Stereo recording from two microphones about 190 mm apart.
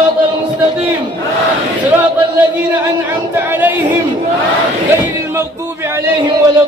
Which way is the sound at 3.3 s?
10° right (ahead or behind).